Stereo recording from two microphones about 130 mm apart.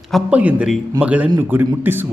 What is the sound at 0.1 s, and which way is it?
A man's voice, 10° right (ahead or behind).